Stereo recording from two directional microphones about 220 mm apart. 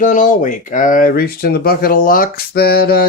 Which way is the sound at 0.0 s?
35° left (ahead or behind).